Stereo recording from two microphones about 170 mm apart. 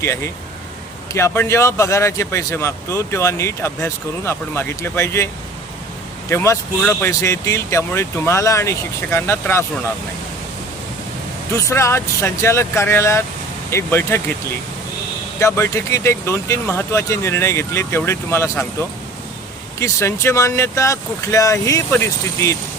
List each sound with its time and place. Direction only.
1.1 s speech: 15° left (ahead or behind)
6.3 s speech: 15° left (ahead or behind)
11.7 s speech: 15° left (ahead or behind)
15.4 s speech: 15° left (ahead or behind)